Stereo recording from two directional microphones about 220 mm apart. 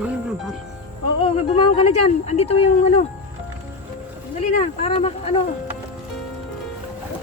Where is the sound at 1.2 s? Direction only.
25° left (ahead or behind).